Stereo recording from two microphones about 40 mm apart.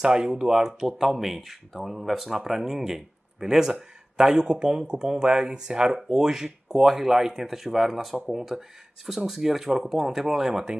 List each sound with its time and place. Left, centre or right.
0.0 s speech: centre